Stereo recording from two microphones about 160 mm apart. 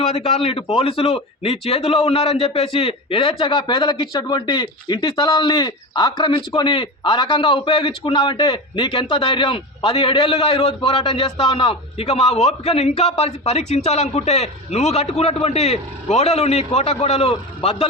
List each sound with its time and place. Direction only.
0.0 s a man's voice: 35° left (ahead or behind)